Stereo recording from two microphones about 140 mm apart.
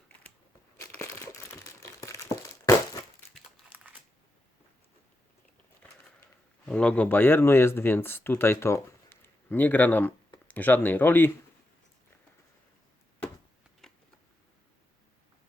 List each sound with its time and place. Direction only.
0.8 s crumpling: 20° left (ahead or behind)
3.7 s typing: 10° right (ahead or behind)
6.7 s speech: 5° left (ahead or behind)
13.8 s a sound: centre (ahead or behind)